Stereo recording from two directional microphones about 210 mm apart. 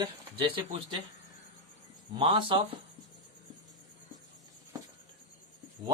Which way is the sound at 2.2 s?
25° right (ahead or behind).